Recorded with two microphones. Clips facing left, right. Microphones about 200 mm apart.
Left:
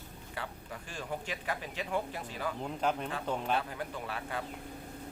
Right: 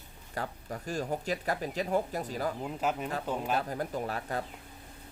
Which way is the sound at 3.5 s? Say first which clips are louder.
Right 3 dB; 40° right (ahead or behind).